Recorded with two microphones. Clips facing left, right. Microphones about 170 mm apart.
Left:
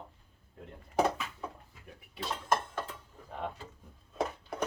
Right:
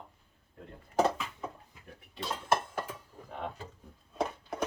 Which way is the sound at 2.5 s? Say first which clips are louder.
Right 1 dB; 10° right (ahead or behind).